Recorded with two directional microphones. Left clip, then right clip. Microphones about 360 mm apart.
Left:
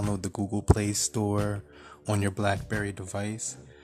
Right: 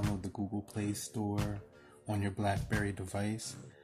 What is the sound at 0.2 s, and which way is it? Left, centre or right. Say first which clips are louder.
Speech: left 8 dB; left.